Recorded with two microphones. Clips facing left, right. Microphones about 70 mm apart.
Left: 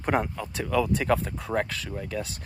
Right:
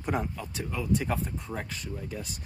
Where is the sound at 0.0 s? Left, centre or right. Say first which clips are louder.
Left 5 dB; left.